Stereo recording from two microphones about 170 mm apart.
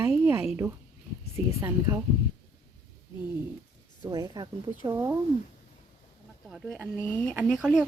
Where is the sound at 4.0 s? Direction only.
20° right (ahead or behind).